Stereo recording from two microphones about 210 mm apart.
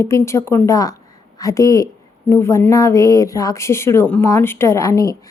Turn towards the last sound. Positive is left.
turn(degrees=15)  # may be behind; listen again after turning